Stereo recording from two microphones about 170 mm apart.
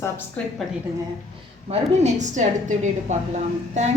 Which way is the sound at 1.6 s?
40° right (ahead or behind).